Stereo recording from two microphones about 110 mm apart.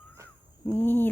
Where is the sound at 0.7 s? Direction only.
20° left (ahead or behind).